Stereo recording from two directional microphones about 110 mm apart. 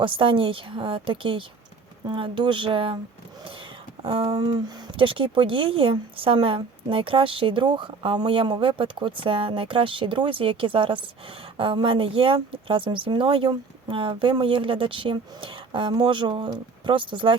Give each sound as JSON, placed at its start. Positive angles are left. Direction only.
{"t": 0.0, "sound": "a woman's voice", "side_deg": -50}
{"t": 4.0, "sound": "speech", "side_deg": -55}
{"t": 4.4, "sound": "a sound", "side_deg": -35}
{"t": 4.9, "sound": "a woman's voice", "side_deg": -50}